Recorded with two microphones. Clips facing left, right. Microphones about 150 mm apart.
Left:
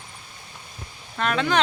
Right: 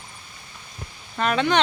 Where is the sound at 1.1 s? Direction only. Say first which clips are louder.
Right 2 dB; centre (ahead or behind).